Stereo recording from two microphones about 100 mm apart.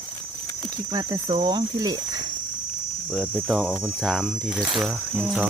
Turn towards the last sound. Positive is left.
turn(degrees=-5)  # may be behind; listen again after turning